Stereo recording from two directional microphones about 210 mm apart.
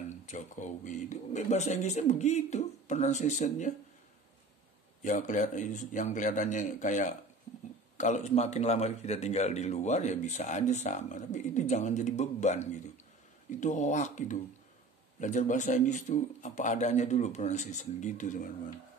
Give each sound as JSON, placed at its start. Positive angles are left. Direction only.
{"t": 0.3, "sound": "a man's voice", "side_deg": 35}
{"t": 5.0, "sound": "a man's voice", "side_deg": 35}